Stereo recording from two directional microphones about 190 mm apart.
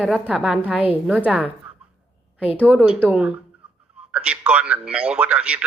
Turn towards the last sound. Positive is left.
turn(degrees=-5)  # may be behind; listen again after turning